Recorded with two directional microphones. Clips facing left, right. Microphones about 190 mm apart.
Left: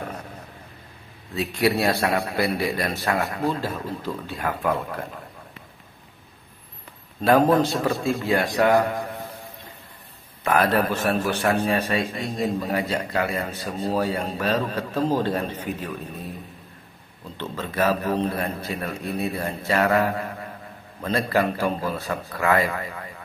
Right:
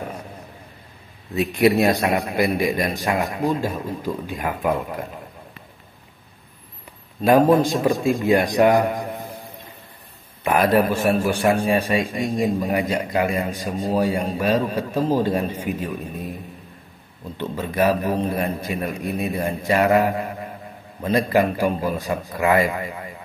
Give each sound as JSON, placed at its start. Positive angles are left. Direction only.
{"t": 1.3, "sound": "a man's voice", "side_deg": -20}
{"t": 7.2, "sound": "a man's voice", "side_deg": -10}
{"t": 10.4, "sound": "a man's voice", "side_deg": -15}
{"t": 17.4, "sound": "a man's voice", "side_deg": -15}